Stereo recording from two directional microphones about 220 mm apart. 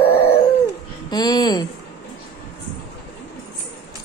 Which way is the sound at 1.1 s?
20° left (ahead or behind).